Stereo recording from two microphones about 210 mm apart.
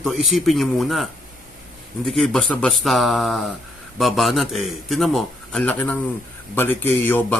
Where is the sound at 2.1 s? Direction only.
Centre (ahead or behind).